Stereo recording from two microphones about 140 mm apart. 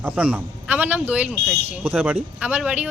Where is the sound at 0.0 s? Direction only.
10° right (ahead or behind).